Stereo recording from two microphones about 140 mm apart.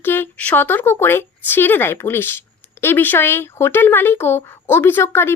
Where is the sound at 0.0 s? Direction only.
15° left (ahead or behind).